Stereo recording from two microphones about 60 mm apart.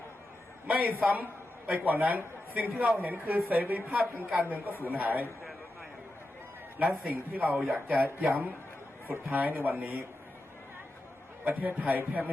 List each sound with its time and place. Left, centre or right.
0.7 s a man's voice: right
7.1 s a man's voice: right
11.4 s a man's voice: right